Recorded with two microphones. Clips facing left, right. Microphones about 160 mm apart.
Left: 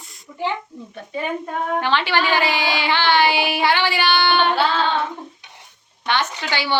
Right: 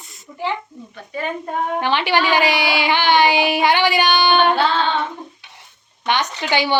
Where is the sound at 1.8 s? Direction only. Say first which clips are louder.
Right 3 dB; 15° right (ahead or behind).